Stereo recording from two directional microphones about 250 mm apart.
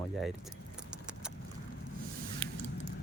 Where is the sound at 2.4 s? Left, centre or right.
Right.